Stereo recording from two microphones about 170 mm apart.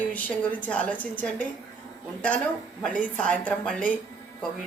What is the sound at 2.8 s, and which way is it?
A woman's voice, 5° left (ahead or behind).